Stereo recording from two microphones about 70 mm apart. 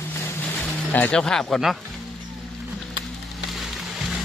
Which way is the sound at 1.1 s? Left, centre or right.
Centre.